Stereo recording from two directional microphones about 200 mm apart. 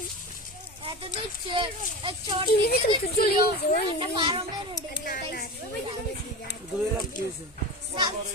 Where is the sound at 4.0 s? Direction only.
25° right (ahead or behind).